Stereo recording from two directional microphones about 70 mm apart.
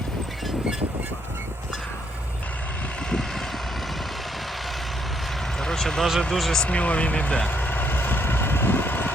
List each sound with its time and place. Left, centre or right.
5.5 s vehicle: centre
6.3 s speech: centre
6.7 s speech: centre
7.5 s vehicle: left